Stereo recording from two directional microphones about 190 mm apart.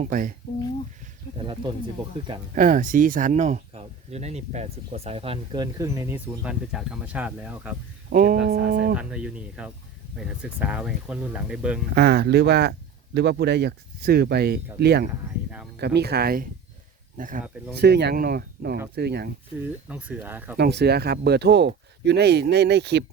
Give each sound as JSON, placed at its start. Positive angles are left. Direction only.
{"t": 0.0, "sound": "speech", "side_deg": -45}
{"t": 2.6, "sound": "speech", "side_deg": -45}
{"t": 8.1, "sound": "speech", "side_deg": -45}
{"t": 9.0, "sound": "speech", "side_deg": -5}
{"t": 11.9, "sound": "speech", "side_deg": -60}
{"t": 17.7, "sound": "speech", "side_deg": -60}
{"t": 19.5, "sound": "speech", "side_deg": -10}
{"t": 20.6, "sound": "speech", "side_deg": -60}